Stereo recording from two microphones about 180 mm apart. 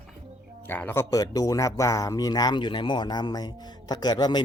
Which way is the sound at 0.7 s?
10° left (ahead or behind).